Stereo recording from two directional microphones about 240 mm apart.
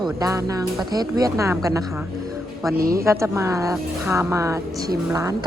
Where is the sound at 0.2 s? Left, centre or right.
Centre.